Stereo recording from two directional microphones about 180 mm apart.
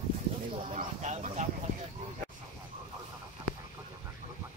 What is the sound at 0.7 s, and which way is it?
Speech, 40° right (ahead or behind).